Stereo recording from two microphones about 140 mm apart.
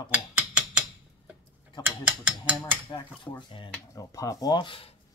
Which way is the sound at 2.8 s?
35° left (ahead or behind).